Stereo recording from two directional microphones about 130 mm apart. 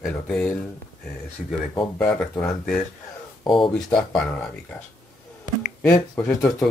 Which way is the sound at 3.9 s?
5° left (ahead or behind).